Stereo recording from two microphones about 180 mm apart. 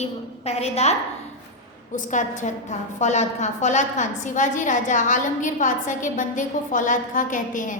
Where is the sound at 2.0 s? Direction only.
40° left (ahead or behind).